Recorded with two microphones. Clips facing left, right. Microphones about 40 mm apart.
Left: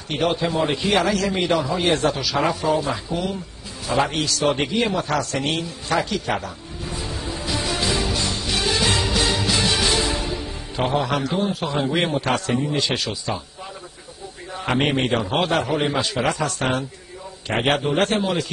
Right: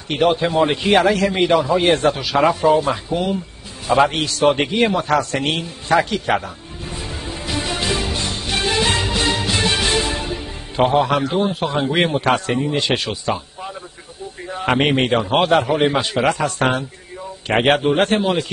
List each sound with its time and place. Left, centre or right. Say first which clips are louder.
0.4 s a man's voice: right 4 dB; right
3.8 s a sound: right 6 dB; right
10.8 s a man's voice: right 6 dB; right
14.5 s a man's voice: right 4 dB; right
17.7 s a man's voice: right 4 dB; right
18.0 s a man's voice: right 3 dB; right